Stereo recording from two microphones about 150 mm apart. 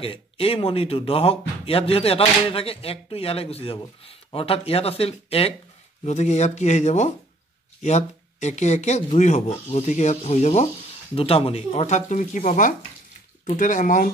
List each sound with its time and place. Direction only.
0.0 s speech: 40° left (ahead or behind); by 14.1 s 60° left (ahead or behind)